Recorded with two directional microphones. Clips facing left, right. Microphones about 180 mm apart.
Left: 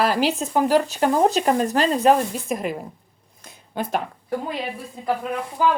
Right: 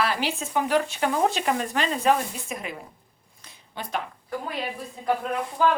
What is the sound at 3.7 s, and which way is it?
Speech, 45° left (ahead or behind).